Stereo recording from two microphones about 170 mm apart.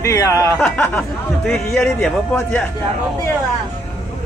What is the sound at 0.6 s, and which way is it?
Speech, 5° left (ahead or behind).